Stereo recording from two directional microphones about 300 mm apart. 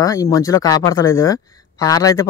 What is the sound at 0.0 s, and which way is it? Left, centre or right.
Speech, centre.